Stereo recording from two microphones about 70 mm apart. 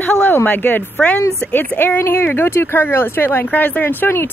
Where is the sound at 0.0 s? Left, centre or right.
Left.